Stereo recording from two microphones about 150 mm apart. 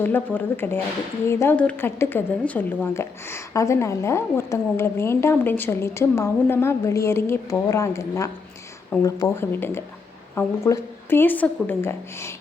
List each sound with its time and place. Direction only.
0.0 s a woman's voice: 10° left (ahead or behind)